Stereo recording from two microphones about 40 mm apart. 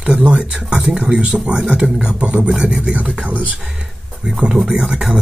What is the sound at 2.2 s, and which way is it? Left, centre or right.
Speech, right.